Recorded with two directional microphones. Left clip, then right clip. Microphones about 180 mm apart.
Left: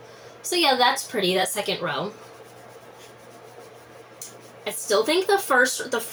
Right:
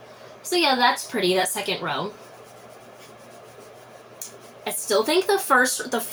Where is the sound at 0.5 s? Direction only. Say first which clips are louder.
Even; centre (ahead or behind).